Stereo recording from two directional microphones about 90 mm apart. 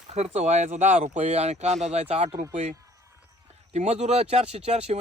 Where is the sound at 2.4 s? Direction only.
40° right (ahead or behind).